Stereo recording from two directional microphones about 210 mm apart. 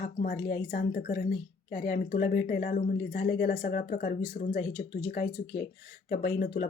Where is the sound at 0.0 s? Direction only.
40° left (ahead or behind).